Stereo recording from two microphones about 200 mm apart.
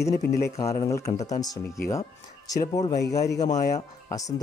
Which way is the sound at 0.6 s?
15° left (ahead or behind).